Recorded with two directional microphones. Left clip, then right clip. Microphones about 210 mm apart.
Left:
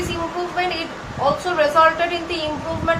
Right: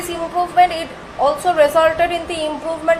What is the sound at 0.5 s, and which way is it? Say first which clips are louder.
A woman's voice: right 8 dB; 45° right (ahead or behind).